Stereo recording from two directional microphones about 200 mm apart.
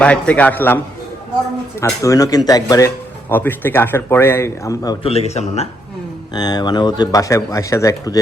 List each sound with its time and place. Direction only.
0.0 s speech: 5° left (ahead or behind)
1.8 s speech: 15° left (ahead or behind); by 5.6 s 30° left (ahead or behind)
6.3 s speech: 20° left (ahead or behind)